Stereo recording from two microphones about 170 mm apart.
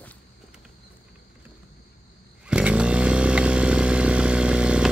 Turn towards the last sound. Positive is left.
turn(degrees=-5)  # may be behind; listen again after turning